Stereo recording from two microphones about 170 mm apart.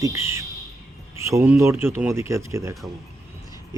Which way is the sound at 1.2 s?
15° right (ahead or behind).